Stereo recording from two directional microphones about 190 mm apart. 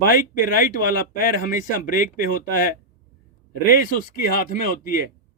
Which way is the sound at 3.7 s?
45° left (ahead or behind).